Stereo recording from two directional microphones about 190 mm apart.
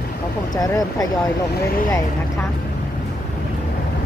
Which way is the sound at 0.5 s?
20° left (ahead or behind).